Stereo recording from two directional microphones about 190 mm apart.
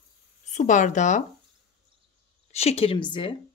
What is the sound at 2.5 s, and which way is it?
Speech, 35° left (ahead or behind).